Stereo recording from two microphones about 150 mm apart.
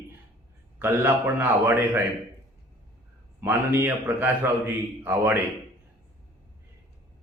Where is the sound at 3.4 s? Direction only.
15° right (ahead or behind).